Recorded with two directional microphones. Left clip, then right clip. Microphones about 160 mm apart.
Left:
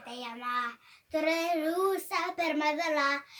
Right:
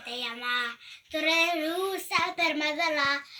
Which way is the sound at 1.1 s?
10° left (ahead or behind).